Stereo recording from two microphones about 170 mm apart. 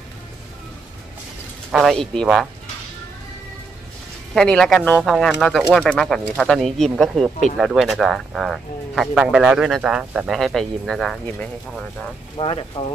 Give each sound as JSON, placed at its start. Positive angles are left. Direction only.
{"t": 1.7, "sound": "speech", "side_deg": 0}
{"t": 4.3, "sound": "speech", "side_deg": 5}
{"t": 12.4, "sound": "speech", "side_deg": 30}